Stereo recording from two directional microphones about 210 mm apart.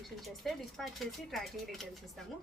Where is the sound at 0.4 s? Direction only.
Centre (ahead or behind).